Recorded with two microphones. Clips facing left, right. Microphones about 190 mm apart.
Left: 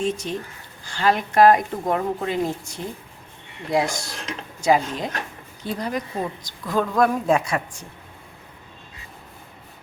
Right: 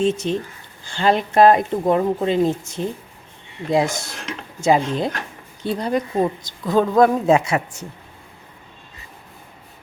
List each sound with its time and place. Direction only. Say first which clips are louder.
0.0 s speech: right 5 dB; 25° right (ahead or behind)